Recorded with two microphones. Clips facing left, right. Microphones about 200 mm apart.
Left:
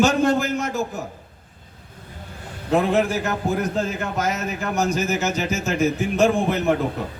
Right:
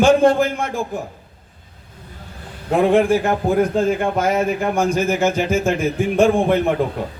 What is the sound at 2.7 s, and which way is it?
A man's voice, 50° right (ahead or behind).